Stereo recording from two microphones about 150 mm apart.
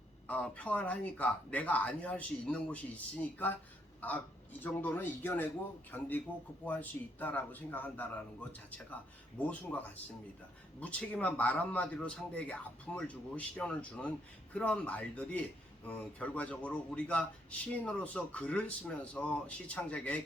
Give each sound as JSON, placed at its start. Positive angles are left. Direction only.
{"t": 0.3, "sound": "speech", "side_deg": 10}